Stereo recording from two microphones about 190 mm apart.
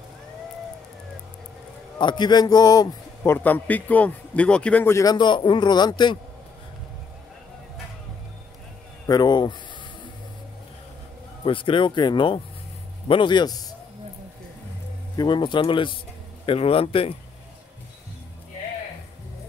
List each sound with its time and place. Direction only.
2.0 s a man's voice: 25° left (ahead or behind)
9.0 s a man's voice: 20° left (ahead or behind)
11.4 s a man's voice: 25° left (ahead or behind)
15.1 s a man's voice: 25° left (ahead or behind)